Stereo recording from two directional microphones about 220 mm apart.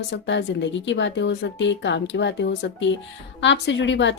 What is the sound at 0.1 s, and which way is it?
A woman's voice, 50° left (ahead or behind).